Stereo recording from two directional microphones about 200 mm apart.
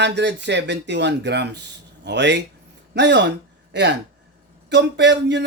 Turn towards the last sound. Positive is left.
turn(degrees=-60)  # may be behind; listen again after turning